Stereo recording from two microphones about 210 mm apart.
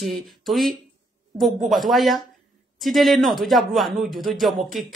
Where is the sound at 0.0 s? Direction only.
Centre (ahead or behind).